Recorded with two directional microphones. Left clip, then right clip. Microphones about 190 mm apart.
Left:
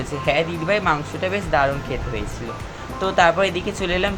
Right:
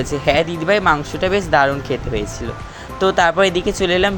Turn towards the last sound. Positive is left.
turn(degrees=-30)  # may be behind; listen again after turning